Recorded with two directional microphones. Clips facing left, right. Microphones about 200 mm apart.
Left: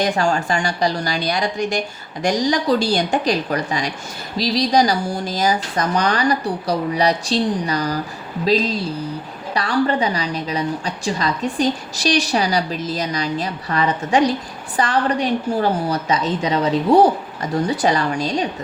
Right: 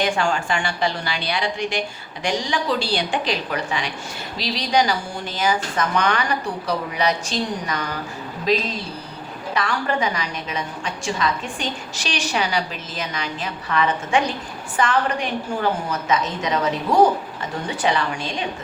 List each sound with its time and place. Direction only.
0.0 s a woman's voice: 40° left (ahead or behind)
9.6 s a woman's voice: 35° left (ahead or behind)